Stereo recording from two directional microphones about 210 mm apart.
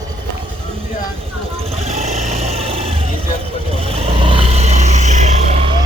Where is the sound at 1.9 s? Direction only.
30° right (ahead or behind).